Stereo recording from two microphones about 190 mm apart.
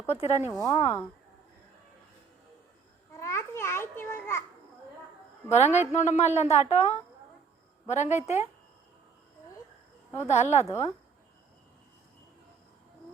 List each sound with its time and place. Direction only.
0.1 s speech: 35° left (ahead or behind)
3.2 s babbling: 15° left (ahead or behind)
5.5 s speech: 35° left (ahead or behind)
10.2 s speech: 35° left (ahead or behind)